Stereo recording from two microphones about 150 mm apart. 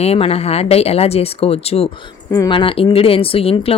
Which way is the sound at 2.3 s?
30° left (ahead or behind).